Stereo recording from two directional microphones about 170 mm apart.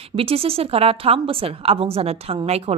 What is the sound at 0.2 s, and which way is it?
A woman's voice, 35° right (ahead or behind).